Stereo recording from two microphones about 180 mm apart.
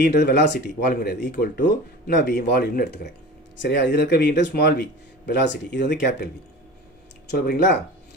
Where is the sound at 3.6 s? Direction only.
75° left (ahead or behind).